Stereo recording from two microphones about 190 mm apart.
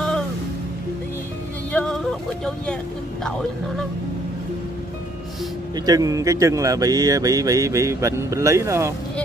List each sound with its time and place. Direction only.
1.7 s vehicle: 5° left (ahead or behind)
5.9 s speech: 20° right (ahead or behind)